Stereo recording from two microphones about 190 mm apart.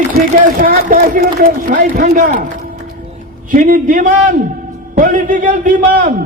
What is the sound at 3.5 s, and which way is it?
A man's voice, 45° right (ahead or behind).